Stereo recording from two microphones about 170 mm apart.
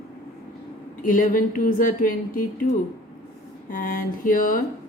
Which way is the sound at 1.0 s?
50° left (ahead or behind).